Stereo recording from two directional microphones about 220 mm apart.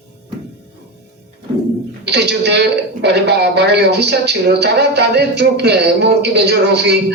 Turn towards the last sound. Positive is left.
turn(degrees=-50)  # may be behind; listen again after turning